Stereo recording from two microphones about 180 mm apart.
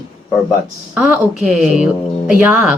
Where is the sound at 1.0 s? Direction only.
5° right (ahead or behind).